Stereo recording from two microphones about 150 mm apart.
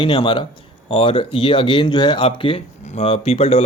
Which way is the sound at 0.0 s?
35° left (ahead or behind).